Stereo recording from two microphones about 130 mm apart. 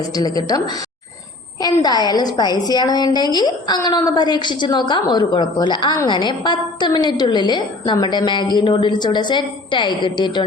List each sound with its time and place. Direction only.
0.0 s a woman's voice: 30° left (ahead or behind)
1.6 s a woman's voice: 30° left (ahead or behind)